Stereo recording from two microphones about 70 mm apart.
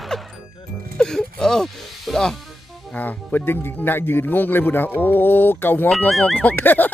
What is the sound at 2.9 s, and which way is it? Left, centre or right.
Speech, left.